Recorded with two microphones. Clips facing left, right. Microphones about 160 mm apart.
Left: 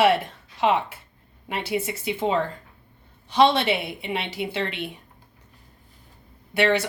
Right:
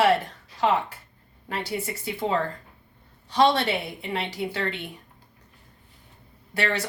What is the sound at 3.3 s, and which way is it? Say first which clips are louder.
A woman's voice: left 2 dB; 25° left (ahead or behind).